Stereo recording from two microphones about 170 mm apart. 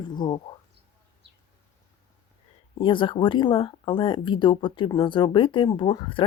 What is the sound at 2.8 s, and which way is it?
Speech, 30° left (ahead or behind).